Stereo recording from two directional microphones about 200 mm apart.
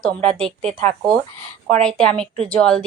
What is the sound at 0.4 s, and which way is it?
Speech, 30° right (ahead or behind).